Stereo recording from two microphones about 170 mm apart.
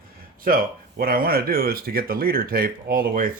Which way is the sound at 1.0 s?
60° right (ahead or behind).